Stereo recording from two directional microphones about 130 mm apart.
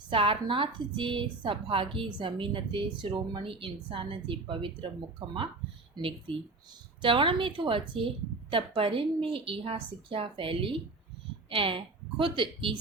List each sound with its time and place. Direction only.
0.1 s a woman's voice: 40° right (ahead or behind)